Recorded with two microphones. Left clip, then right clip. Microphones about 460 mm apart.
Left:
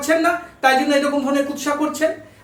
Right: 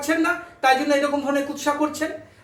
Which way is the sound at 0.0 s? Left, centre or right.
Centre.